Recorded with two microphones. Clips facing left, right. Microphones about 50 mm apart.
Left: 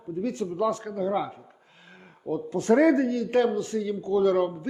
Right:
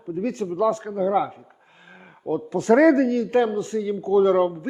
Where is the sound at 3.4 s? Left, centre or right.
Right.